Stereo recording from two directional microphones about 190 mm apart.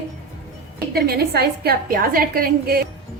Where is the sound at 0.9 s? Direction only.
55° right (ahead or behind).